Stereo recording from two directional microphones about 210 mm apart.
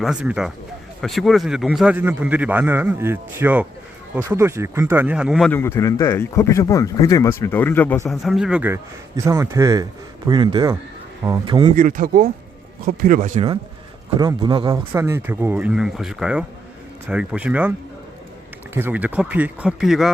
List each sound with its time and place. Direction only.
0.0 s a man's voice: 5° right (ahead or behind)
5.5 s speech: 10° left (ahead or behind)
8.1 s a man's voice: centre (ahead or behind); by 11.7 s 20° right (ahead or behind)
11.8 s speech: 40° right (ahead or behind)
14.2 s a man's voice: 20° right (ahead or behind); by 20.1 s centre (ahead or behind)